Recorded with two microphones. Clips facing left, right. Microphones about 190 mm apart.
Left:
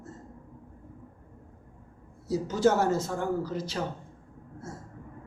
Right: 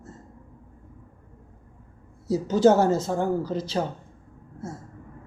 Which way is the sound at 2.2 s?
30° right (ahead or behind).